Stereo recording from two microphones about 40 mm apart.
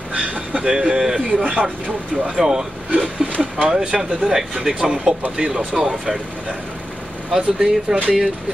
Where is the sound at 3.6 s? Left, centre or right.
Right.